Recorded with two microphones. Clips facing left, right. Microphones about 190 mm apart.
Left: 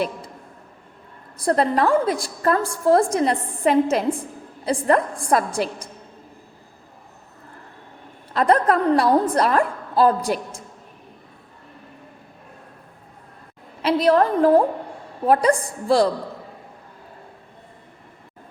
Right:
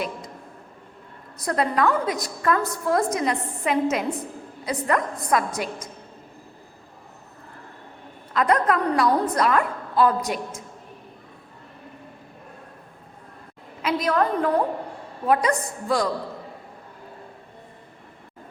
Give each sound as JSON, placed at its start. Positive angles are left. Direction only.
{"t": 1.4, "sound": "a woman's voice", "side_deg": 30}
{"t": 8.3, "sound": "a woman's voice", "side_deg": 30}
{"t": 13.8, "sound": "a woman's voice", "side_deg": 30}